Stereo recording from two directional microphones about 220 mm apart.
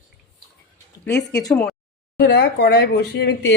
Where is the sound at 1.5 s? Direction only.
5° left (ahead or behind).